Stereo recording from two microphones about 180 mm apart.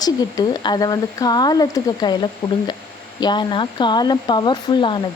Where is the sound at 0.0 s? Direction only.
20° left (ahead or behind).